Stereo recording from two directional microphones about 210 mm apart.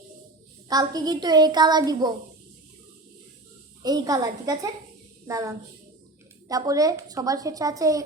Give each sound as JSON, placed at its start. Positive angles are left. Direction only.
{"t": 0.7, "sound": "a woman's voice", "side_deg": -20}
{"t": 3.8, "sound": "a woman's voice", "side_deg": -20}